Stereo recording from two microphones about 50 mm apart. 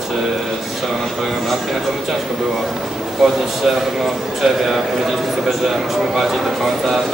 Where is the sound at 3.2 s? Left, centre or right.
Centre.